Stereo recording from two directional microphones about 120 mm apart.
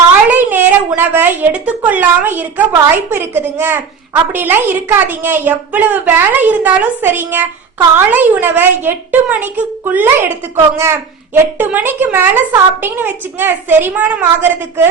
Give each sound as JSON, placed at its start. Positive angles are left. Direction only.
{"t": 0.3, "sound": "speech", "side_deg": -15}